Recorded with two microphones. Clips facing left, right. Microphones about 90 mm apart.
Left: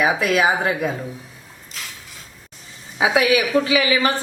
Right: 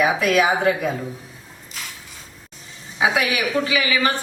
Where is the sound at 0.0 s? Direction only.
30° left (ahead or behind).